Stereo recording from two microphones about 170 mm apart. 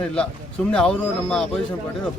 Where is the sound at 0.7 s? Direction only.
5° left (ahead or behind).